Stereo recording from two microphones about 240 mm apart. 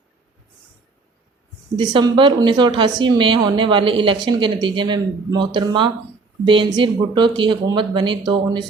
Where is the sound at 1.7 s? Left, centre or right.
Centre.